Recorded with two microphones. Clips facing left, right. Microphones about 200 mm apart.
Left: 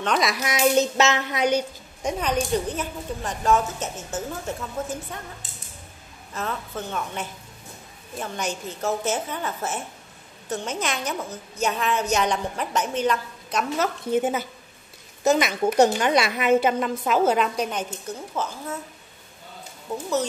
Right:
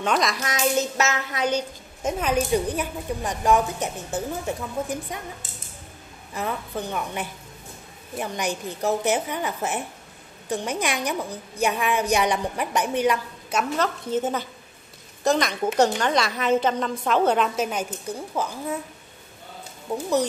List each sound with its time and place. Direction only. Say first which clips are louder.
0.0 s a child's voice: even; centre (ahead or behind)
0.6 s child singing: left 4 dB; 25° left (ahead or behind)
2.0 s a woman's voice: right 1 dB; 5° right (ahead or behind)
6.3 s a woman's voice: right 2 dB; 15° right (ahead or behind)
13.7 s a woman's voice: left 5 dB; 10° left (ahead or behind); by 18.8 s 10° right (ahead or behind)